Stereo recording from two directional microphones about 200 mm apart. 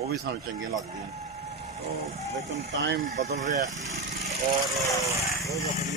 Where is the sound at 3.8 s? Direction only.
Centre (ahead or behind).